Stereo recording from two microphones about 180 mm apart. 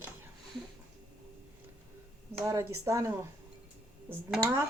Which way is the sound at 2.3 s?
15° right (ahead or behind).